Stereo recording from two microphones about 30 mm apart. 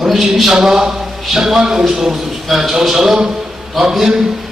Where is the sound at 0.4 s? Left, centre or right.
Centre.